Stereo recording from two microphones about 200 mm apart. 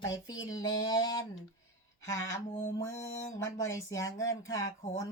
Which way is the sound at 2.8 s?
15° left (ahead or behind).